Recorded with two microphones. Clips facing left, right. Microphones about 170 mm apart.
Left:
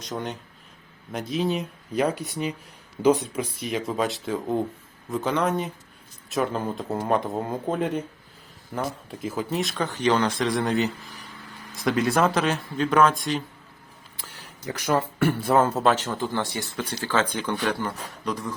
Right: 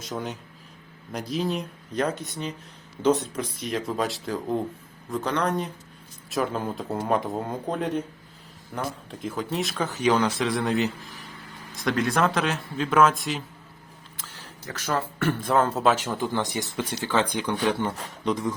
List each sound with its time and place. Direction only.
1.1 s speech: centre (ahead or behind)
3.6 s speech: centre (ahead or behind)
14.7 s speech: 15° left (ahead or behind); by 17.5 s 15° right (ahead or behind)
17.5 s speech: centre (ahead or behind)
17.7 s speech: 25° right (ahead or behind)